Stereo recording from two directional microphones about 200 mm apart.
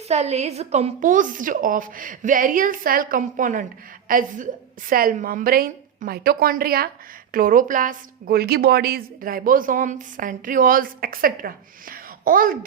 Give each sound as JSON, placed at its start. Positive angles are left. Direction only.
{"t": 0.1, "sound": "a woman's voice", "side_deg": -35}